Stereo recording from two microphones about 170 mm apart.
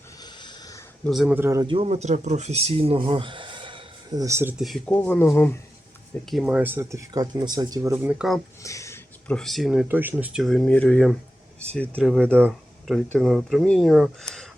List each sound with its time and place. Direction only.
0.2 s a sound: 25° left (ahead or behind)
1.0 s speech: centre (ahead or behind)
1.4 s speech: 15° right (ahead or behind)
1.6 s speech: 35° right (ahead or behind); by 4.5 s 15° right (ahead or behind)
4.5 s speech: centre (ahead or behind)
6.2 s speech: 5° right (ahead or behind); by 7.9 s 20° right (ahead or behind)
7.9 s speech: 10° right (ahead or behind)
8.6 s speech: 20° left (ahead or behind)